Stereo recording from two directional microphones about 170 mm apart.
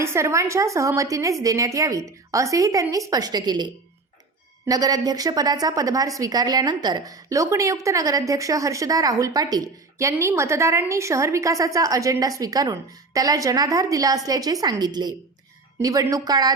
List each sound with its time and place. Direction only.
0.0 s a woman's voice: 15° right (ahead or behind)